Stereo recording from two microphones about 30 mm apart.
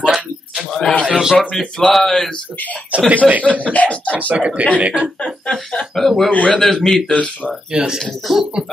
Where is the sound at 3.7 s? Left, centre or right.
Left.